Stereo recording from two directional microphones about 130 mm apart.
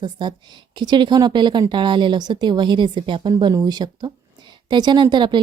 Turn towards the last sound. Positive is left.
turn(degrees=-35)  # may be behind; listen again after turning